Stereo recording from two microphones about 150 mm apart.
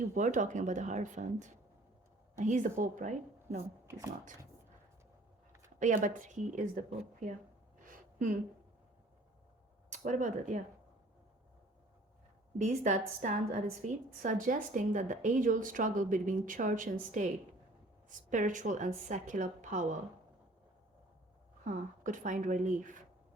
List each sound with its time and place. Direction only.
0.1 s a woman's voice: 55° right (ahead or behind)
3.8 s speech: 20° right (ahead or behind)
5.8 s a woman's voice: 60° right (ahead or behind)
7.8 s a sound: 65° right (ahead or behind)
9.9 s a woman's voice: 55° right (ahead or behind)
12.5 s a woman's voice: 55° right (ahead or behind)
21.6 s a woman's voice: 60° right (ahead or behind)